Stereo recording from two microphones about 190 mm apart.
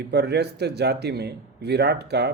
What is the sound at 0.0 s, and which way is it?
A man's voice, 60° right (ahead or behind).